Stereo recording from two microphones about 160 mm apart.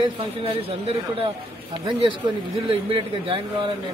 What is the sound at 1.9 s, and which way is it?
Speech, 30° right (ahead or behind).